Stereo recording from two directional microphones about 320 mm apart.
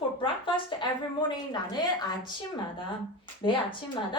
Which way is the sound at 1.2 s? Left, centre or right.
Centre.